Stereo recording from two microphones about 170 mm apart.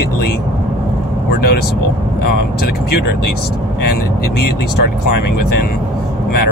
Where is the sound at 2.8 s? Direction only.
65° left (ahead or behind).